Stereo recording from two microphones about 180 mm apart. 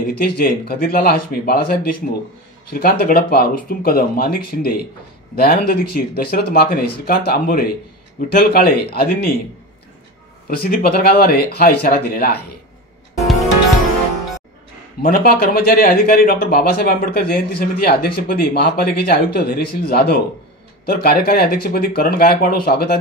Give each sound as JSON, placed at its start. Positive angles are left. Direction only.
{"t": 0.2, "sound": "speech", "side_deg": 60}
{"t": 10.5, "sound": "speech", "side_deg": 55}
{"t": 15.0, "sound": "speech", "side_deg": 55}